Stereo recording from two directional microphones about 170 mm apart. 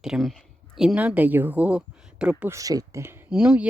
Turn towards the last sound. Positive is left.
turn(degrees=-5)  # may be behind; listen again after turning